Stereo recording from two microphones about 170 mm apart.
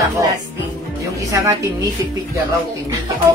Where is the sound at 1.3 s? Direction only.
20° right (ahead or behind).